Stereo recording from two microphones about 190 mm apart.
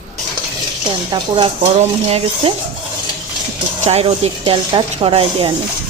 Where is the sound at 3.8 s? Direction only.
35° right (ahead or behind).